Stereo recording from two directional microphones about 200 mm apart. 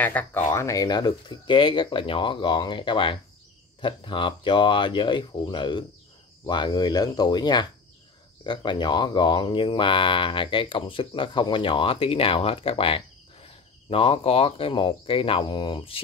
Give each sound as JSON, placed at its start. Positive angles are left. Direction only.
{"t": 0.0, "sound": "speech", "side_deg": 10}